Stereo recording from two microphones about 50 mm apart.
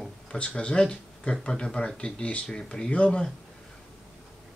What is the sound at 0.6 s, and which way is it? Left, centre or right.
Speech, left.